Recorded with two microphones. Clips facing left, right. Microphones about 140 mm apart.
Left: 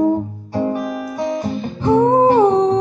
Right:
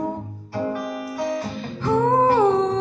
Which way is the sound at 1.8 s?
20° left (ahead or behind).